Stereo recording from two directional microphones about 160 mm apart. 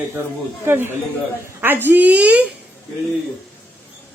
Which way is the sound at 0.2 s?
15° right (ahead or behind).